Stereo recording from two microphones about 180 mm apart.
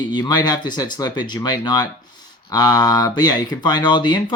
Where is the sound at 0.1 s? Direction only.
20° left (ahead or behind).